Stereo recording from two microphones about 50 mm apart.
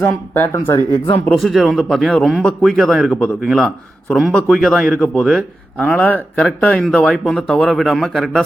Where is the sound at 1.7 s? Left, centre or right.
Centre.